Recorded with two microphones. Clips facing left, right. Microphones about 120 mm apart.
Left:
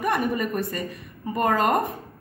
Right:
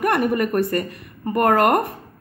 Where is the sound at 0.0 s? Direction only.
65° right (ahead or behind).